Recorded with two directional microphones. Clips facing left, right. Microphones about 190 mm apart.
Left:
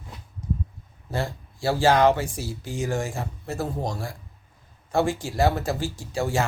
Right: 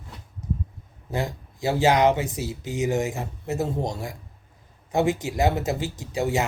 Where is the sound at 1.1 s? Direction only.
15° right (ahead or behind).